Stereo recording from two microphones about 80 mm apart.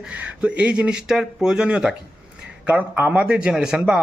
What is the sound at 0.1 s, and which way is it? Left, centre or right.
Speech, centre.